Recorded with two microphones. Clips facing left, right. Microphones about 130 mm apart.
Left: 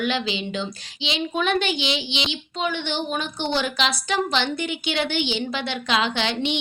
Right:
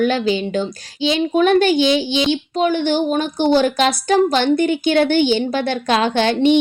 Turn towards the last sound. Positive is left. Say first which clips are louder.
# right 10 dB
turn(degrees=-50)  # may be behind; listen again after turning